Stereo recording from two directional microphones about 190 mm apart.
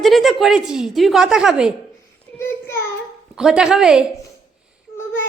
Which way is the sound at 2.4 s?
15° left (ahead or behind).